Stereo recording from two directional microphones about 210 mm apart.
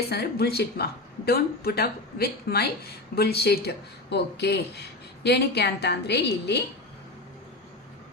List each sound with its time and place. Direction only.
0.1 s speech: 50° left (ahead or behind)